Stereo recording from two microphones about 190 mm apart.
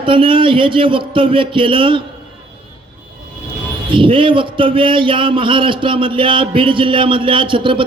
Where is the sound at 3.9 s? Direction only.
25° right (ahead or behind).